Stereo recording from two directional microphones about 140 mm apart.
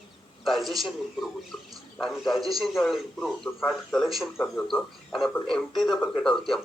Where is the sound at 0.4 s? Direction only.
Centre (ahead or behind).